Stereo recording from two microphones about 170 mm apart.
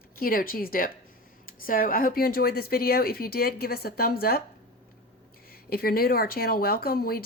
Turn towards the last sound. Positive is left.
turn(degrees=65)  # may be behind; listen again after turning